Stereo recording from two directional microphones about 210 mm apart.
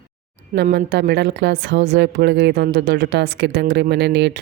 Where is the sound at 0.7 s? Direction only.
50° right (ahead or behind).